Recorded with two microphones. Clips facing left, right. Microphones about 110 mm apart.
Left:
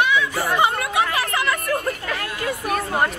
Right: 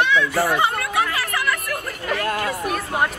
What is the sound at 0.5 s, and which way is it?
Hubbub, 20° left (ahead or behind).